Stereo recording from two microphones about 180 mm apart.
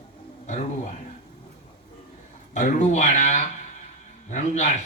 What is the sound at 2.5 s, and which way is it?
A man's voice, 45° left (ahead or behind).